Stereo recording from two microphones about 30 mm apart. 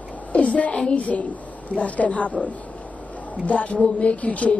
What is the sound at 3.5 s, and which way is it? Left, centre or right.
A woman's voice, left.